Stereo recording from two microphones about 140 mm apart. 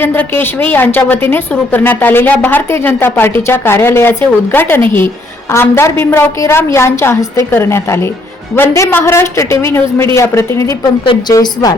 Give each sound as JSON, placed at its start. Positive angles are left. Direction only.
{"t": 0.0, "sound": "a woman's voice", "side_deg": 15}
{"t": 11.0, "sound": "a woman's voice", "side_deg": 35}